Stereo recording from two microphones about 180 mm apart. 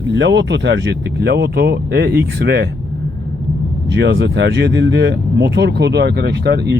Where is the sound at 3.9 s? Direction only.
75° right (ahead or behind).